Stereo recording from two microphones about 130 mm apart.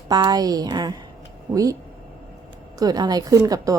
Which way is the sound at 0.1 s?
30° right (ahead or behind).